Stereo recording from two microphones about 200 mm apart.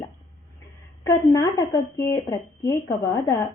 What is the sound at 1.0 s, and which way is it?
A woman's voice, 20° left (ahead or behind).